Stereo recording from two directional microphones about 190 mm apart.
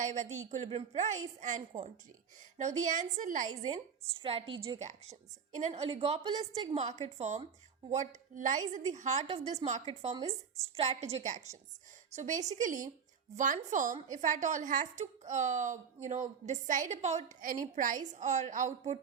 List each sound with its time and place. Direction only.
0.0 s a woman's voice: 40° right (ahead or behind)
4.2 s a woman's voice: 30° right (ahead or behind)